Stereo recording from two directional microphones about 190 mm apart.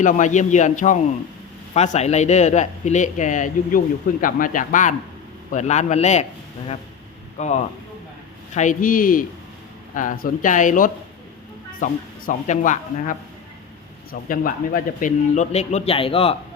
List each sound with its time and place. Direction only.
0.0 s speech: 40° left (ahead or behind)
7.3 s speech: 35° left (ahead or behind)